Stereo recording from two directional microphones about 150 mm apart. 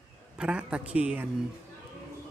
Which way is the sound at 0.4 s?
5° right (ahead or behind).